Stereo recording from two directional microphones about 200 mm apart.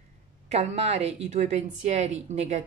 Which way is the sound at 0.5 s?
30° right (ahead or behind).